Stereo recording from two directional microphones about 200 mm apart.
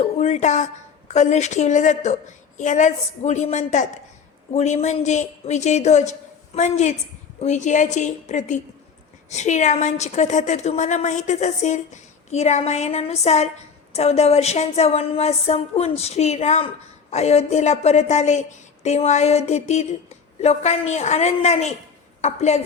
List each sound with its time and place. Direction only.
0.0 s a woman's voice: 35° left (ahead or behind)